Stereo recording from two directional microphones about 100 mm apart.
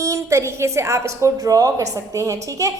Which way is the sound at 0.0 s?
30° right (ahead or behind).